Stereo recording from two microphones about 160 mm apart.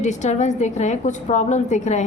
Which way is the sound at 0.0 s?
45° left (ahead or behind).